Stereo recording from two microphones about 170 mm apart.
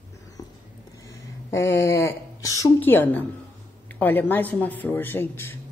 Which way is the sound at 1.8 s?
15° left (ahead or behind).